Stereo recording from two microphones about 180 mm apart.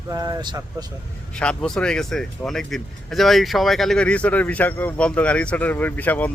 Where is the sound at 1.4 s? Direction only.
5° left (ahead or behind).